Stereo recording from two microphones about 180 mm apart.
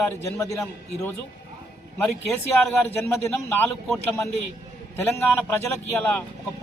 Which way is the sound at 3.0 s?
10° left (ahead or behind).